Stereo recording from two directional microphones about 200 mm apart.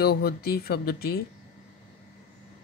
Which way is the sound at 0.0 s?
50° left (ahead or behind).